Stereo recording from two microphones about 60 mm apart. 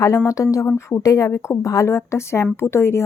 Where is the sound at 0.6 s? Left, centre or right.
Left.